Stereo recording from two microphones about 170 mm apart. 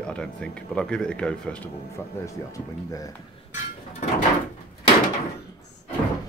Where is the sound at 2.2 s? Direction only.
20° left (ahead or behind).